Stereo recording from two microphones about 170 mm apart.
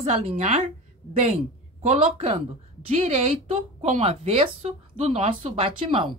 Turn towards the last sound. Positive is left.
turn(degrees=-30)  # may be behind; listen again after turning